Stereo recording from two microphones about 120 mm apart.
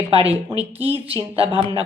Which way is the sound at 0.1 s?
50° right (ahead or behind).